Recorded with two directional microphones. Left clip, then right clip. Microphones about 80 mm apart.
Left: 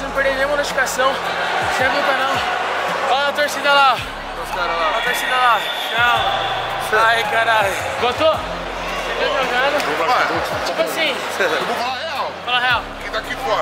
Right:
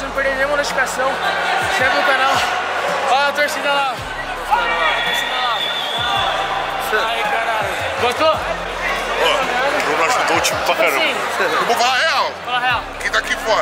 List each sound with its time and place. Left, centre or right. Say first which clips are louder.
0.2 s a man's voice: even; centre
3.6 s a man's voice: left 9 dB; centre
7.3 s a man's voice: left 3 dB; centre
11.8 s speech: right 7 dB; right